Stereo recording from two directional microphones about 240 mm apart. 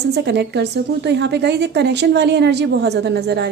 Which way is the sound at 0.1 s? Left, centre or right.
Right.